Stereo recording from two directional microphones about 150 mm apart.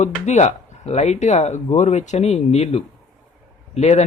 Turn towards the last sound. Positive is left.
turn(degrees=45)  # may be behind; listen again after turning